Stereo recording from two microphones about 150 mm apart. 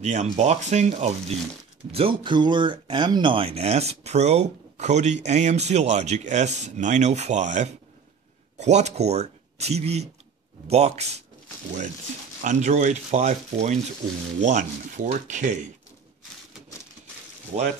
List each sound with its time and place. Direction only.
0.0 s speech: 50° right (ahead or behind)
12.4 s speech: 55° right (ahead or behind)
17.5 s speech: 45° right (ahead or behind)